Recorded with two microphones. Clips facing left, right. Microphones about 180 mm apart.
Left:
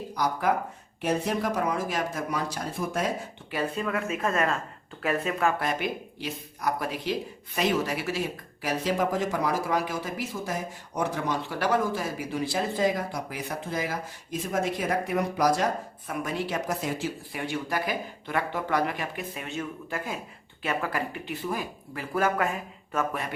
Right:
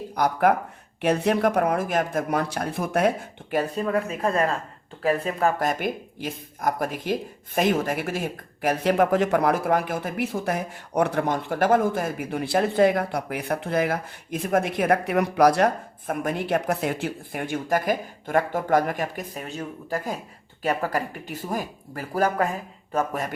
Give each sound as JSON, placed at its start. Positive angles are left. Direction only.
{"t": 0.1, "sound": "speech", "side_deg": -60}